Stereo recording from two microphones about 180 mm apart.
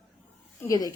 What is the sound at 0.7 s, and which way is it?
Speech, 20° left (ahead or behind).